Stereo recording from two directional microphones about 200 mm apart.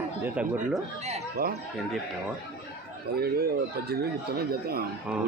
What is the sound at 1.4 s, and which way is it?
Speech, 50° right (ahead or behind).